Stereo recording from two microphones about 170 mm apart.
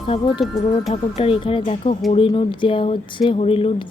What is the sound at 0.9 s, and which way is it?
Speech, 35° left (ahead or behind).